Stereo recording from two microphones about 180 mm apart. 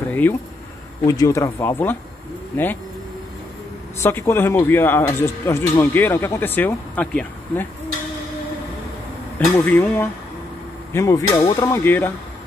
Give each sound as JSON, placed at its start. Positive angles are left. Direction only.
{"t": 0.1, "sound": "speech", "side_deg": 10}
{"t": 4.0, "sound": "speech", "side_deg": 15}
{"t": 9.7, "sound": "speech", "side_deg": 10}